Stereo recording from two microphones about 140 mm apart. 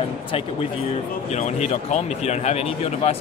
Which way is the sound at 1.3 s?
55° left (ahead or behind).